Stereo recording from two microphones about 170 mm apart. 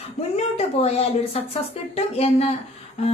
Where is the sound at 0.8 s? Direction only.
40° left (ahead or behind).